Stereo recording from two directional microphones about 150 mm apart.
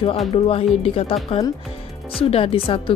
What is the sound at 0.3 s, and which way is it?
A woman's voice, 40° left (ahead or behind).